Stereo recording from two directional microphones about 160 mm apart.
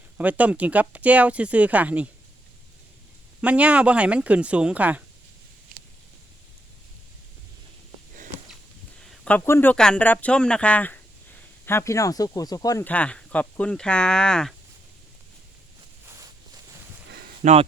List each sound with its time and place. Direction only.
0.2 s speech: 10° right (ahead or behind)
3.4 s speech: 10° right (ahead or behind)
5.7 s a sound: 55° right (ahead or behind)
9.0 s speech: 10° left (ahead or behind)
12.8 s speech: 10° left (ahead or behind)
16.0 s a sound: 20° right (ahead or behind)
17.4 s speech: 40° right (ahead or behind)